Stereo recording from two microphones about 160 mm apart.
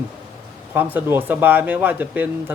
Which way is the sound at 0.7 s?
10° right (ahead or behind).